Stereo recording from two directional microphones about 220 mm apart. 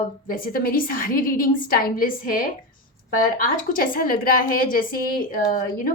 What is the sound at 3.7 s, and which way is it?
A woman's voice, 40° left (ahead or behind).